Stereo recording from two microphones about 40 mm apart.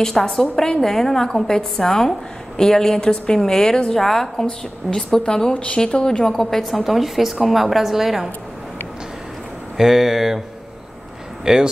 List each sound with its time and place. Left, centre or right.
0.0 s a woman's voice: centre
6.7 s a woman's voice: centre
9.8 s speech: centre
11.4 s speech: centre